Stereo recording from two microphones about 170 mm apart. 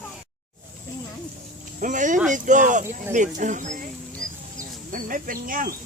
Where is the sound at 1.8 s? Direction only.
50° right (ahead or behind).